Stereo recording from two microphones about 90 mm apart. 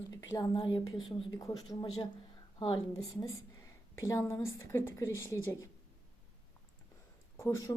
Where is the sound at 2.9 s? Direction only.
40° left (ahead or behind).